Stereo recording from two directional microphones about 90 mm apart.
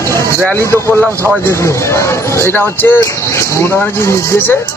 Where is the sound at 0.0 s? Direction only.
35° left (ahead or behind).